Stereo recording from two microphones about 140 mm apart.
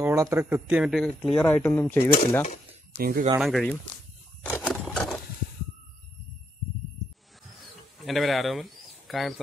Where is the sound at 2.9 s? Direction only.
90° right.